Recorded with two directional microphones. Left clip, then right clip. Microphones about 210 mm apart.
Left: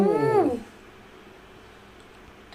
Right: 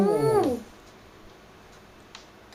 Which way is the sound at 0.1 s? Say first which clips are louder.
Left 1 dB; 15° left (ahead or behind).